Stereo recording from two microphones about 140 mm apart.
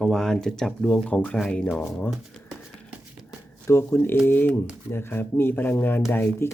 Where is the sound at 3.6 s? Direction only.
20° left (ahead or behind).